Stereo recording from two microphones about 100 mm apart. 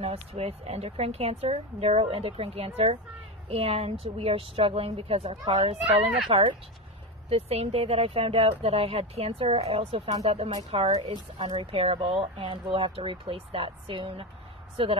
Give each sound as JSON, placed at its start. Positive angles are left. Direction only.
{"t": 0.0, "sound": "a woman's voice", "side_deg": -90}
{"t": 6.3, "sound": "a woman's voice", "side_deg": -90}
{"t": 10.2, "sound": "a woman's voice", "side_deg": -90}
{"t": 10.7, "sound": "a woman's voice", "side_deg": -80}